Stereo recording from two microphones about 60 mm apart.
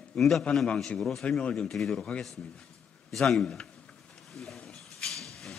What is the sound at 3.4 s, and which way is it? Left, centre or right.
Speech, centre.